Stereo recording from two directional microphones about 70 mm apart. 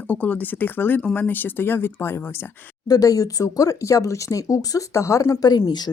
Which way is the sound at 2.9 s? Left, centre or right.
Left.